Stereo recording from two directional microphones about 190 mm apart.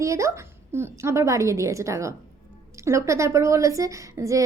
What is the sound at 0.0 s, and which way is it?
A woman's voice, 15° right (ahead or behind).